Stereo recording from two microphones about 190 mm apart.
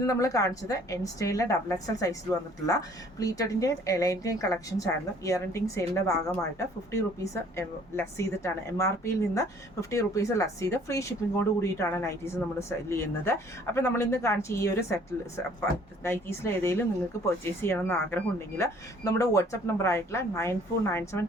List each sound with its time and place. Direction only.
0.1 s speech: 15° left (ahead or behind)
16.0 s speech: 10° left (ahead or behind)